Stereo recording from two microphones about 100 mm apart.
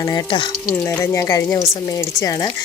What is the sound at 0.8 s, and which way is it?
A woman's voice, 25° left (ahead or behind).